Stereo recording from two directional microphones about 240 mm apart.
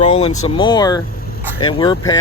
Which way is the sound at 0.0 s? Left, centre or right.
Left.